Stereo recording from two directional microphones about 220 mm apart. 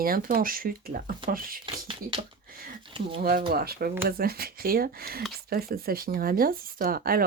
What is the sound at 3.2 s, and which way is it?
Speech, 45° right (ahead or behind).